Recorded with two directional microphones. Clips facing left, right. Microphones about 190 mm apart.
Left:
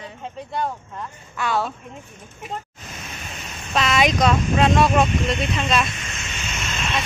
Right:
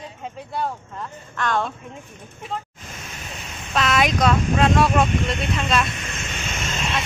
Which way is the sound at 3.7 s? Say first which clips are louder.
Left 1 dB; centre (ahead or behind).